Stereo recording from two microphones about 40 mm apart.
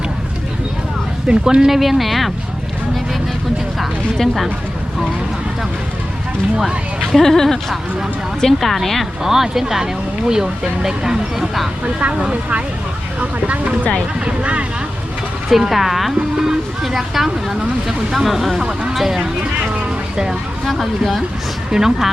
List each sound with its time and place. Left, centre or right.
1.3 s speech: right
1.8 s a woman's voice: centre
7.2 s a woman's voice: centre
9.2 s speech: centre
12.1 s speech: right
15.4 s a woman's voice: centre
20.7 s a woman's voice: centre